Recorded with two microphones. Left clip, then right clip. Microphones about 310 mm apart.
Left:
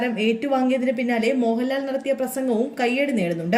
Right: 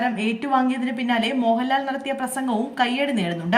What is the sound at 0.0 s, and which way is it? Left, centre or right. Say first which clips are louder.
Speech: left 1 dB; centre.